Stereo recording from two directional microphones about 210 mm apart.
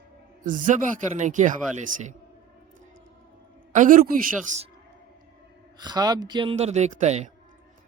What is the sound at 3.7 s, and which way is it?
Speech, 40° right (ahead or behind).